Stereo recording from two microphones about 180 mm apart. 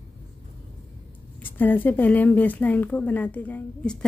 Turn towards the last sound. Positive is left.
turn(degrees=5)  # may be behind; listen again after turning